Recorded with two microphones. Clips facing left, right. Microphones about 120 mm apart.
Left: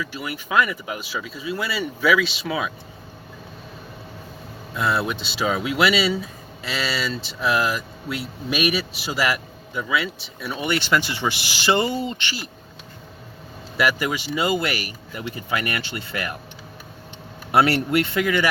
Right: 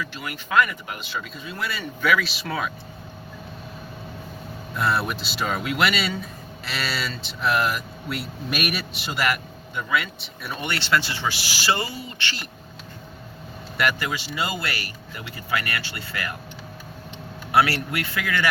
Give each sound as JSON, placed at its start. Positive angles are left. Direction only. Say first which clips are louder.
{"t": 0.0, "sound": "speech", "louder": "left 3 dB", "side_deg": 10}
{"t": 4.8, "sound": "speech", "louder": "left 1 dB", "side_deg": 0}
{"t": 10.7, "sound": "speech", "louder": "left 2 dB", "side_deg": 15}
{"t": 13.7, "sound": "speech", "louder": "left 3 dB", "side_deg": 10}
{"t": 17.5, "sound": "speech", "louder": "left 3 dB", "side_deg": 25}